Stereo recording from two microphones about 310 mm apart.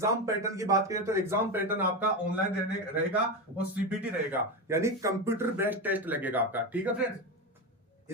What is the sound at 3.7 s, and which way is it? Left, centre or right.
Speech, centre.